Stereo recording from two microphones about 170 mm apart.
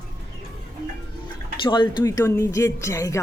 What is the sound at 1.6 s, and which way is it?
Speech, 30° left (ahead or behind).